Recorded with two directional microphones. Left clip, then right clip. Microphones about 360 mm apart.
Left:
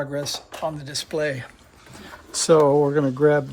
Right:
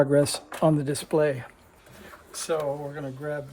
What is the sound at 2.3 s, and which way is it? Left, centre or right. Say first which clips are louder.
Speech: left 12 dB; centre.